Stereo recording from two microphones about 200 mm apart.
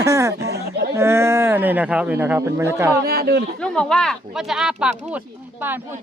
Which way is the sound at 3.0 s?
50° right (ahead or behind).